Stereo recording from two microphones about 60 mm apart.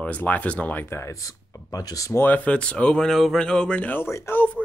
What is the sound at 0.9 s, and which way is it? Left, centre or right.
Speech, left.